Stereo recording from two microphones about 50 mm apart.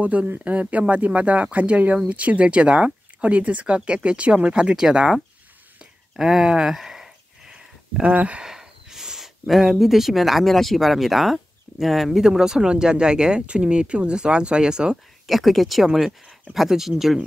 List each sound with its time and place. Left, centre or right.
0.0 s speech: right; by 5.2 s centre
5.8 s a sound: centre
8.1 s speech: right
8.5 s speech: centre
15.2 s speech: centre